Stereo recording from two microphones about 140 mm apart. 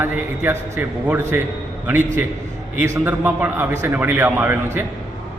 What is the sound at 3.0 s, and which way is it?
A man's voice, 10° right (ahead or behind).